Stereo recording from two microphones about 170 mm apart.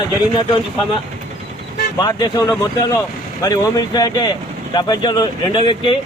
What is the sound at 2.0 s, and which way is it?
A man's voice, 25° left (ahead or behind).